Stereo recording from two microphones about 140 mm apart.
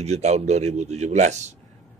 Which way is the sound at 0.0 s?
50° right (ahead or behind).